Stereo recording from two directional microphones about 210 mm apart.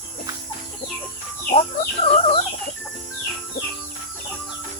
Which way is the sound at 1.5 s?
30° left (ahead or behind).